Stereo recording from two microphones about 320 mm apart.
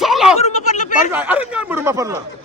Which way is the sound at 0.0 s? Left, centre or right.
Centre.